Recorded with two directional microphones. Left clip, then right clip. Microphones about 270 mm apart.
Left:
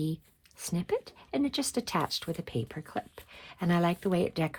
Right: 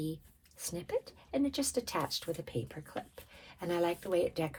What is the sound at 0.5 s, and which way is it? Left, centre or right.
Speech, left.